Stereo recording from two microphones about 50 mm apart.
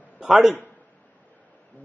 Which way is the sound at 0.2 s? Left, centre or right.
Centre.